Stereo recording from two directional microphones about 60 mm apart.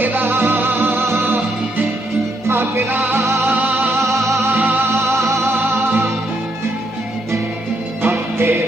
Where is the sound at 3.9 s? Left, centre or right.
Right.